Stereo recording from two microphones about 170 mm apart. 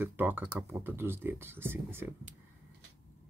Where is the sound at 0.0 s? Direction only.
10° right (ahead or behind).